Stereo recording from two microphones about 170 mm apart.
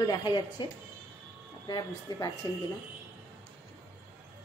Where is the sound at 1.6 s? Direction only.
20° left (ahead or behind).